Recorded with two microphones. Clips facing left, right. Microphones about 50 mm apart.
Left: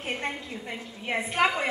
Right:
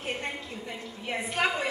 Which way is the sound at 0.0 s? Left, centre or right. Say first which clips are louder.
Left 2 dB; left.